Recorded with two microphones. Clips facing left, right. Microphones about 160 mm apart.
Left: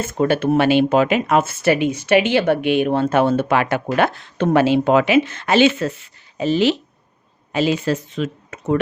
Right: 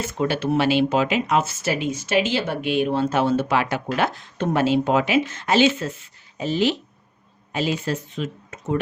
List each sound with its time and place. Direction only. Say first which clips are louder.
0.0 s speech: left 5 dB; 50° left (ahead or behind); by 6.7 s 75° left (ahead or behind)
7.5 s speech: left 5 dB; 90° left